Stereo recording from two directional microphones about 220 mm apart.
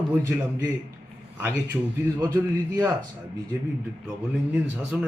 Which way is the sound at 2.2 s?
10° right (ahead or behind).